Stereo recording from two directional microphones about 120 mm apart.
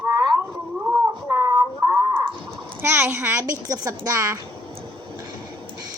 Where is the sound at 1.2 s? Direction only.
25° right (ahead or behind).